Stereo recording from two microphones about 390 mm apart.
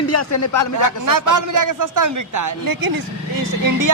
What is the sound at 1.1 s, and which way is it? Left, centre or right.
A man's voice, right.